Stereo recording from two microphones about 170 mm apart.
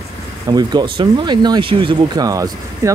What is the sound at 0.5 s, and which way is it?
Speech, 25° right (ahead or behind).